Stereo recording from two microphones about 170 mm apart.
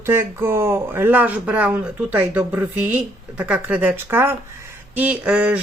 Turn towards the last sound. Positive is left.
turn(degrees=-10)  # may be behind; listen again after turning